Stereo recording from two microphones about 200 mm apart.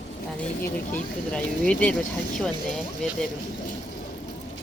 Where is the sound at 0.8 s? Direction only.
5° left (ahead or behind).